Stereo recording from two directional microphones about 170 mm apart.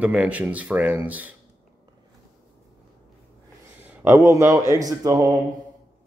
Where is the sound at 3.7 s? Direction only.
15° right (ahead or behind).